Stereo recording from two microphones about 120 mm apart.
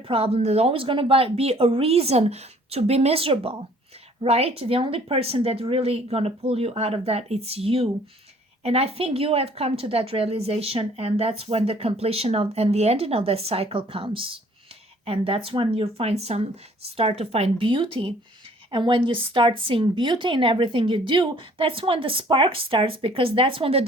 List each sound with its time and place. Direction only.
0.1 s a woman's voice: 55° right (ahead or behind)